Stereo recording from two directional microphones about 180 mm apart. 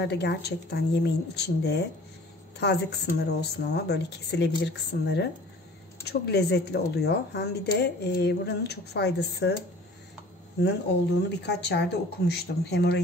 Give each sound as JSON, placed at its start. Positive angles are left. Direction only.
{"t": 0.0, "sound": "speech", "side_deg": 70}
{"t": 11.2, "sound": "speech", "side_deg": 70}